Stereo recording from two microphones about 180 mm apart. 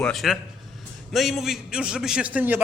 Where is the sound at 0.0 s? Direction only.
Centre (ahead or behind).